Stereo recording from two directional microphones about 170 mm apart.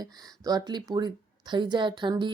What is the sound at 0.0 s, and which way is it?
A woman's voice, 20° right (ahead or behind).